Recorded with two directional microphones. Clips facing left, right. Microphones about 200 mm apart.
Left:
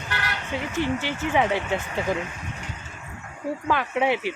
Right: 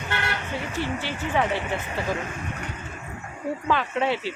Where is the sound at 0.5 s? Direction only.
15° left (ahead or behind).